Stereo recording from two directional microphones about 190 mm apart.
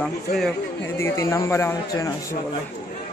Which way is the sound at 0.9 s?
15° left (ahead or behind).